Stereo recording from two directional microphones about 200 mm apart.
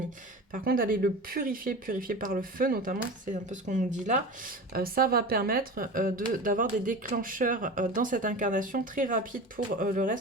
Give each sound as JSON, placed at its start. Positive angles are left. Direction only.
{"t": 0.5, "sound": "speech", "side_deg": -45}